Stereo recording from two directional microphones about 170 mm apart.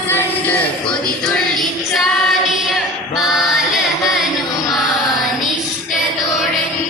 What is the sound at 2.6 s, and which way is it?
Chant, centre (ahead or behind).